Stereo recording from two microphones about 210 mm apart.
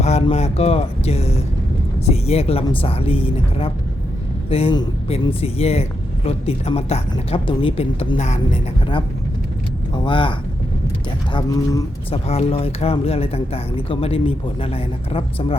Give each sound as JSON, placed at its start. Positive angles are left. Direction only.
{"t": 0.0, "sound": "speech", "side_deg": 30}
{"t": 9.9, "sound": "speech", "side_deg": 20}
{"t": 11.3, "sound": "speech", "side_deg": 15}
{"t": 12.3, "sound": "speech", "side_deg": 30}